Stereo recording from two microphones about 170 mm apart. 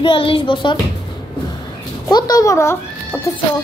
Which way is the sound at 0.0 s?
30° left (ahead or behind).